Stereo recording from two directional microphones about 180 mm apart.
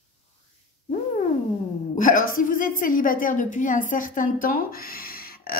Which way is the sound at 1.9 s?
50° left (ahead or behind).